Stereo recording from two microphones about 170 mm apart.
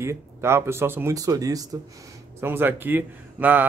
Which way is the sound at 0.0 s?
15° right (ahead or behind).